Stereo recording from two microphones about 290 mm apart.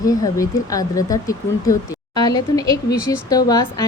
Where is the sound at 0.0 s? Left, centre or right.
Centre.